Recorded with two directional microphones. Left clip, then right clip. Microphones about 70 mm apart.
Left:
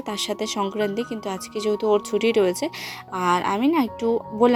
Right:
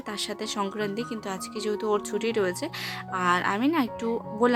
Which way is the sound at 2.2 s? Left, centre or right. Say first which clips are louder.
Left 7 dB; left.